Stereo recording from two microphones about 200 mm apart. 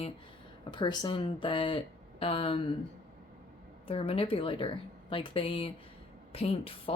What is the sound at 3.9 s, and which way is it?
Speech, 30° left (ahead or behind).